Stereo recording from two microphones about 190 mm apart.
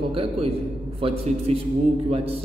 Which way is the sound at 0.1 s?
30° right (ahead or behind).